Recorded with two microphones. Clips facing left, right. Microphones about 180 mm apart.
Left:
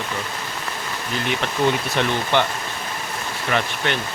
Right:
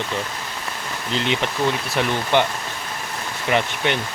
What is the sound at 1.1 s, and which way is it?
Speech, 20° right (ahead or behind).